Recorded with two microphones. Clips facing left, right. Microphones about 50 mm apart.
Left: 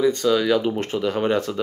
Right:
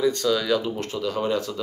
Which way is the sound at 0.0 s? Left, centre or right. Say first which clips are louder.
Left 3 dB; centre.